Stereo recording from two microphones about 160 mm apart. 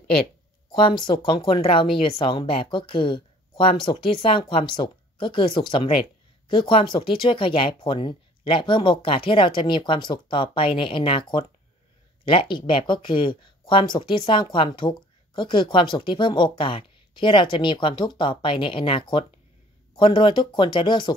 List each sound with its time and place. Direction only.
0.7 s speech: 30° left (ahead or behind)